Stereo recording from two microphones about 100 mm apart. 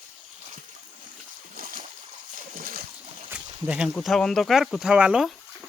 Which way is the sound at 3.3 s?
5° right (ahead or behind).